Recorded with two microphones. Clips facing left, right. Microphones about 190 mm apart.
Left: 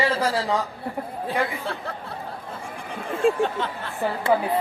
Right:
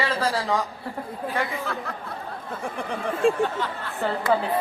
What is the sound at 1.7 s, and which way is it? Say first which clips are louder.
Speech: even; 30° left (ahead or behind).